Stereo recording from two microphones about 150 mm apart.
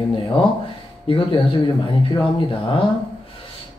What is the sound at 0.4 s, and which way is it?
Speech, 35° left (ahead or behind).